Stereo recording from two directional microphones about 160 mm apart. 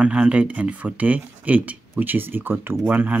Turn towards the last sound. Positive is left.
turn(degrees=-10)  # may be behind; listen again after turning